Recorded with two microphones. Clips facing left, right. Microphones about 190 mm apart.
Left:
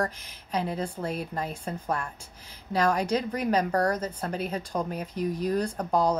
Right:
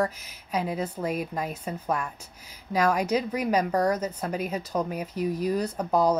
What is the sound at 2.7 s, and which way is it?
A woman's voice, 10° right (ahead or behind).